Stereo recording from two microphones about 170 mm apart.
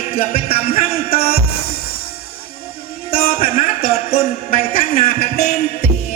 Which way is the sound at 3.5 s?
35° left (ahead or behind).